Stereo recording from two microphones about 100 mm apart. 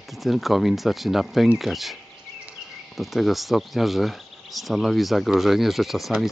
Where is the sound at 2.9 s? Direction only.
Centre (ahead or behind).